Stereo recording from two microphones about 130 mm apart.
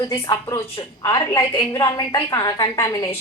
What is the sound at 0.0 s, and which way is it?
A woman's voice, 25° left (ahead or behind).